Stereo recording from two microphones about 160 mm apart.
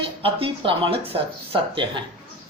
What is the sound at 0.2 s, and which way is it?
Speech, 35° right (ahead or behind).